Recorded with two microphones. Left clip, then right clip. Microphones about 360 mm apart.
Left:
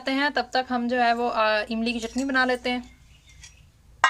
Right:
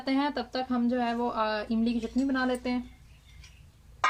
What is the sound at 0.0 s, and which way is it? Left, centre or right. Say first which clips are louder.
Speech: left 5 dB; left.